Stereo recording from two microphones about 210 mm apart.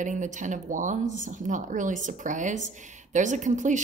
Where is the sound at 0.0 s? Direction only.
35° right (ahead or behind).